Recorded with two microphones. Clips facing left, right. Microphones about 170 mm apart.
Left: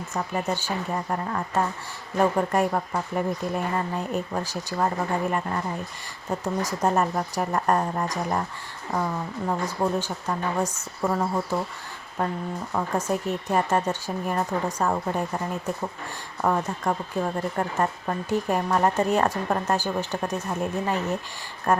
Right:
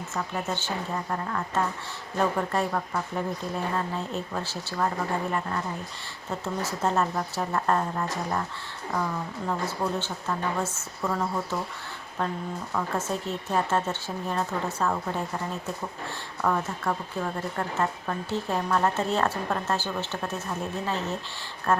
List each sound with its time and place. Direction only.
0.3 s speech: 10° left (ahead or behind)
6.4 s speech: 15° left (ahead or behind)
12.2 s speech: 10° left (ahead or behind)
16.4 s speech: 20° left (ahead or behind)